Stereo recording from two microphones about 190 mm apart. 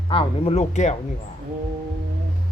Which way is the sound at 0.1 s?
30° left (ahead or behind).